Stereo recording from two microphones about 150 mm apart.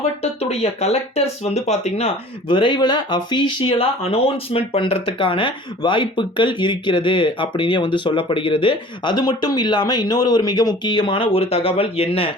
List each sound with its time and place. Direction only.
0.2 s speech: 45° left (ahead or behind)